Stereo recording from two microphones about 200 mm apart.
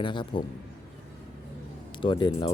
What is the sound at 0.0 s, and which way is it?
Speech, 25° left (ahead or behind).